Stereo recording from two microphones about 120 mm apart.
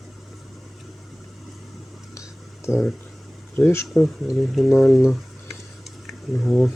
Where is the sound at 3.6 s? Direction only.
15° left (ahead or behind).